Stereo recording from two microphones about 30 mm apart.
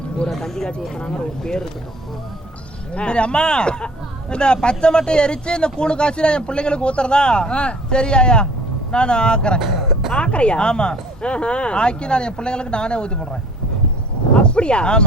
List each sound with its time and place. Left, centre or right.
0.3 s speech: centre
0.8 s speech: left
2.9 s speech: left
9.6 s a sound: centre
10.1 s speech: left
14.3 s speech: left